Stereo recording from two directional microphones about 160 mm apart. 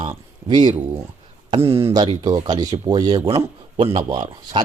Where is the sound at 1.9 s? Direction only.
25° right (ahead or behind).